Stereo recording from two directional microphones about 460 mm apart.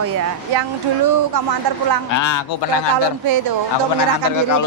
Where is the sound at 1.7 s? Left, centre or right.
Right.